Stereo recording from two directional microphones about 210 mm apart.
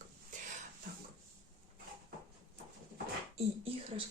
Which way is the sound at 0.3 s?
35° right (ahead or behind).